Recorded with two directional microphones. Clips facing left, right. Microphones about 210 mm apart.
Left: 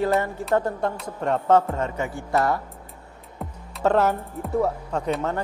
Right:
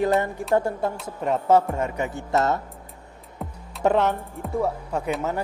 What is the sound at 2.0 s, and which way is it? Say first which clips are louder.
Speech: even; 20° right (ahead or behind).